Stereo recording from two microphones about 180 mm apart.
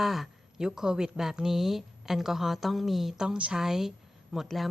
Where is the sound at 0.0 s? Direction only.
Centre (ahead or behind).